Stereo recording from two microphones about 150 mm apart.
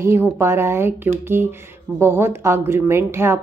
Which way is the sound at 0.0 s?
15° right (ahead or behind).